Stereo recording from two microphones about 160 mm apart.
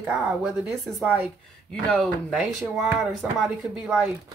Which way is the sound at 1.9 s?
5° left (ahead or behind).